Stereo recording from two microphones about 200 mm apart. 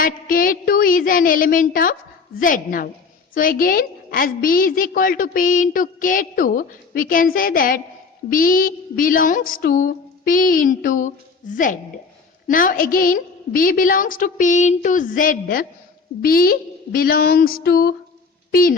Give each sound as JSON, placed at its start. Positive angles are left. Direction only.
{"t": 0.0, "sound": "a woman's voice", "side_deg": 45}